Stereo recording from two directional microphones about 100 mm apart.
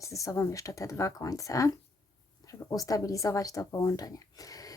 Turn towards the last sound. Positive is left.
turn(degrees=35)  # may be behind; listen again after turning